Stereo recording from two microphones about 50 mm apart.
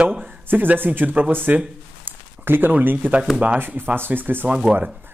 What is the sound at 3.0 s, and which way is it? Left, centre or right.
Speech, right.